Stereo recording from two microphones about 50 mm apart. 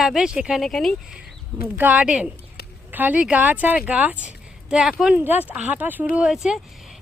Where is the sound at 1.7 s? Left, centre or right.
Right.